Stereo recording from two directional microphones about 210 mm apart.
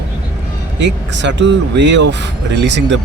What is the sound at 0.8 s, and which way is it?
Speech, 60° right (ahead or behind).